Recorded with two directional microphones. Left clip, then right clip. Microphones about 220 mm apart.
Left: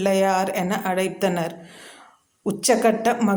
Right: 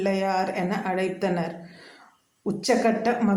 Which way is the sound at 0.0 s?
40° left (ahead or behind).